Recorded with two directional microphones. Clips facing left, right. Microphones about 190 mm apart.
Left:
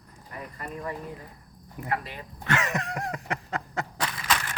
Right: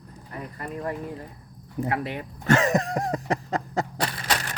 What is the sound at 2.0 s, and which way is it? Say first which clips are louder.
Speech: right 10 dB; 60° right (ahead or behind).